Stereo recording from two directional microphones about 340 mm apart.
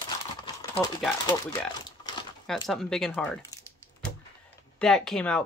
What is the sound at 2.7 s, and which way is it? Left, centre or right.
Speech, centre.